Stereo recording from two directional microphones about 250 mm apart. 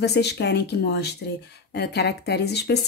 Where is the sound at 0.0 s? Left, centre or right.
Left.